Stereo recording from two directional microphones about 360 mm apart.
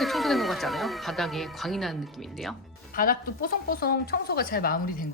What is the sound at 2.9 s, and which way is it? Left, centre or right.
Speech, left.